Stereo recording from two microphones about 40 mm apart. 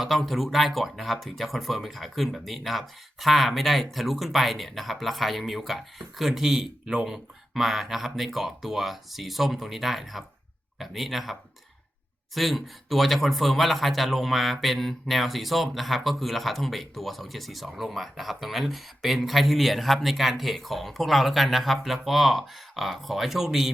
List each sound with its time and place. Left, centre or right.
0.2 s speech: centre